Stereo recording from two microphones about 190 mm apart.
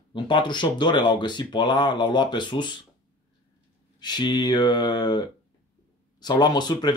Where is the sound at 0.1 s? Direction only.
25° left (ahead or behind).